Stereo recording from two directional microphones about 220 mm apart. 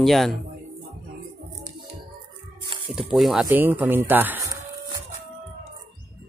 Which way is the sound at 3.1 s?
Centre (ahead or behind).